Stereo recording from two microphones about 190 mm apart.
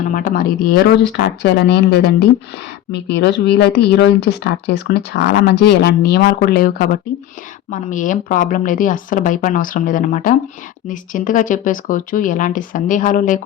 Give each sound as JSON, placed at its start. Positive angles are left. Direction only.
{"t": 0.1, "sound": "speech", "side_deg": 45}